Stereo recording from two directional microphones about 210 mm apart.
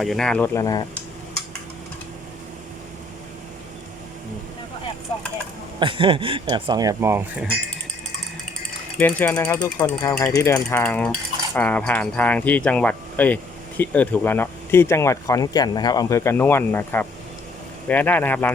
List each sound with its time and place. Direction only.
0.0 s cutlery: centre (ahead or behind); by 0.9 s 15° left (ahead or behind)
5.8 s speech: 25° right (ahead or behind)
9.0 s cutlery: 5° left (ahead or behind)
9.6 s cutlery: 15° left (ahead or behind)